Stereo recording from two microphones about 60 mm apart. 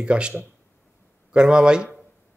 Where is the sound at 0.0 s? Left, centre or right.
Centre.